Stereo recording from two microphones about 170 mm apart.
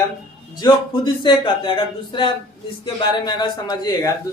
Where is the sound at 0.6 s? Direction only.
25° left (ahead or behind).